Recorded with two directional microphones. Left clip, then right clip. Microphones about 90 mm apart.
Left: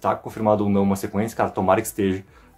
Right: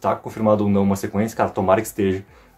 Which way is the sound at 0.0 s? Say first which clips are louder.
Right 1 dB; 30° left (ahead or behind).